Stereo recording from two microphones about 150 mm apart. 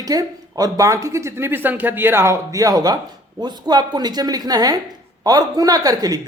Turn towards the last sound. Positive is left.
turn(degrees=-25)  # may be behind; listen again after turning